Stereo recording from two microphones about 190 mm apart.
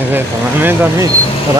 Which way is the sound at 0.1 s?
10° right (ahead or behind).